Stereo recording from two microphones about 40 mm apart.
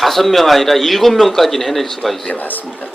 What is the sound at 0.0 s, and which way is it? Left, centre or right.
Speech, centre.